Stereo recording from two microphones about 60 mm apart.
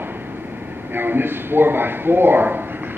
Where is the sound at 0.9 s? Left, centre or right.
Right.